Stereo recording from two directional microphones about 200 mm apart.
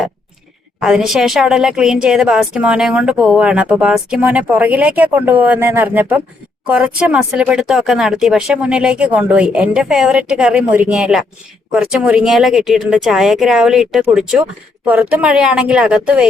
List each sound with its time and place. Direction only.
0.8 s a woman's voice: 5° right (ahead or behind)